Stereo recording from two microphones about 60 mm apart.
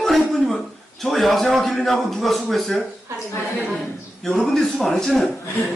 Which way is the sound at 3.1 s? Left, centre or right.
Right.